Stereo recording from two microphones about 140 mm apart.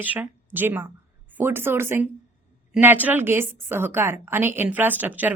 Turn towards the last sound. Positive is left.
turn(degrees=-10)  # may be behind; listen again after turning